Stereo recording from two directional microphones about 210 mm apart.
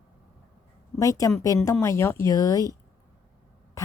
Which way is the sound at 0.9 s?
15° left (ahead or behind).